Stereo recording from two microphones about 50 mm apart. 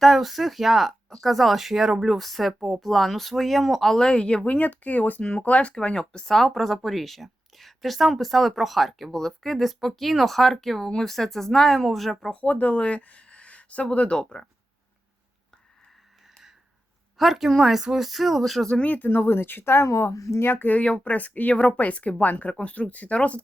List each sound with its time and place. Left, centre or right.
0.0 s speech: centre
4.4 s speech: left; by 6.2 s centre
6.2 s speech: centre
12.3 s speech: left
17.2 s speech: centre
18.9 s speech: left
19.9 s speech: left
20.4 s speech: left
20.7 s speech: left